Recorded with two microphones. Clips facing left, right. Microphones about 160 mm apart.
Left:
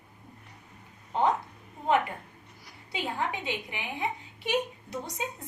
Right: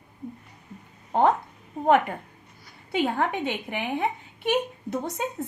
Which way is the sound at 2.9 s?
55° right (ahead or behind).